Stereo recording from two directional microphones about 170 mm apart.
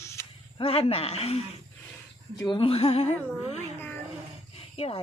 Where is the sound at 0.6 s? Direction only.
35° left (ahead or behind).